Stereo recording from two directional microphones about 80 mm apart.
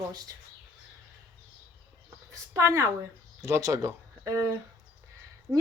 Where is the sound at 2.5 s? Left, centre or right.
Right.